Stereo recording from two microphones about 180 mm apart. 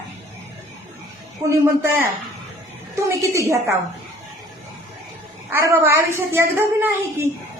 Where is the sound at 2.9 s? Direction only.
15° right (ahead or behind).